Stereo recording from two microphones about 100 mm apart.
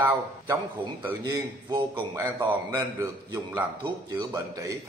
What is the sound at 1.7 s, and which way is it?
A man's voice, 40° right (ahead or behind).